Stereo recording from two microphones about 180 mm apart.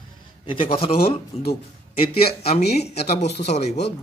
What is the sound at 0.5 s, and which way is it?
Speech, 30° left (ahead or behind).